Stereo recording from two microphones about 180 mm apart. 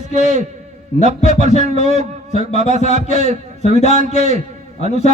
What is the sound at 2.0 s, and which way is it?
A man's voice, 40° right (ahead or behind).